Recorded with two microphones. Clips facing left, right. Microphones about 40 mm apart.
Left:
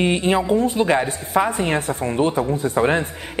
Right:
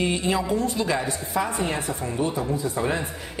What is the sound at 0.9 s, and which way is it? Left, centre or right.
A woman's voice, left.